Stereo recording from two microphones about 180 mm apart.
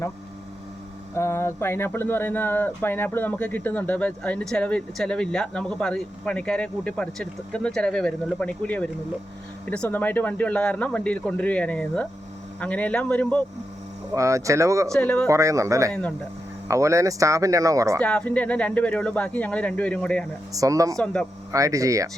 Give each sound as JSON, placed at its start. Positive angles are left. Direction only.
{"t": 1.1, "sound": "speech", "side_deg": 15}
{"t": 14.1, "sound": "speech", "side_deg": -15}
{"t": 14.9, "sound": "speech", "side_deg": 5}
{"t": 15.3, "sound": "speech", "side_deg": -15}
{"t": 15.9, "sound": "speech", "side_deg": 5}
{"t": 16.6, "sound": "speech", "side_deg": -15}
{"t": 18.0, "sound": "speech", "side_deg": 5}
{"t": 20.5, "sound": "speech", "side_deg": -20}
{"t": 21.0, "sound": "speech", "side_deg": 5}
{"t": 21.5, "sound": "speech", "side_deg": -20}